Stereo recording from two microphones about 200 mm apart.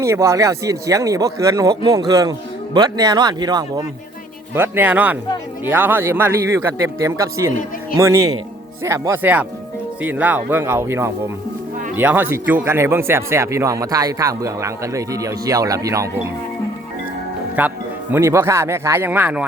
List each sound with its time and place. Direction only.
0.0 s speech: 15° right (ahead or behind)
17.6 s speech: 10° right (ahead or behind)